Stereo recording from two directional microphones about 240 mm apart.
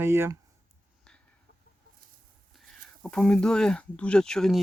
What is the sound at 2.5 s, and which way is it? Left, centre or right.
Speech, centre.